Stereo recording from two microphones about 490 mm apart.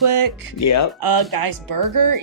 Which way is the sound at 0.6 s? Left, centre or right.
Left.